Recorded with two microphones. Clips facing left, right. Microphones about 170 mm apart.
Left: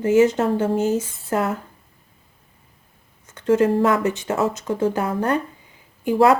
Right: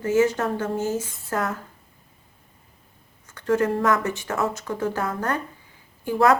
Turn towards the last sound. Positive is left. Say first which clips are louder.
# left 3 dB
turn(degrees=25)  # may be behind; listen again after turning